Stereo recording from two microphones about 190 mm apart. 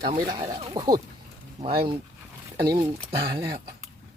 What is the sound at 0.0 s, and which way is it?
Speech, 25° right (ahead or behind).